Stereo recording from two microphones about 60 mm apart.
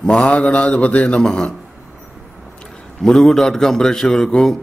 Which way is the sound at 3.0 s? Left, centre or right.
Centre.